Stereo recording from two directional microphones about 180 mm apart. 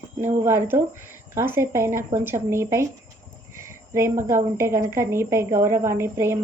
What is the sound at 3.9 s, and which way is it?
A woman's voice, 15° right (ahead or behind).